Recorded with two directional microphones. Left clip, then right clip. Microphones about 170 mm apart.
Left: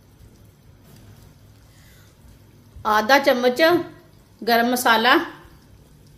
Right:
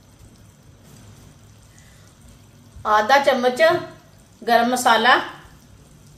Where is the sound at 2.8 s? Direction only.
50° left (ahead or behind).